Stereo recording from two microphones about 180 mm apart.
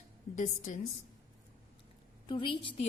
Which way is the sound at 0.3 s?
45° left (ahead or behind).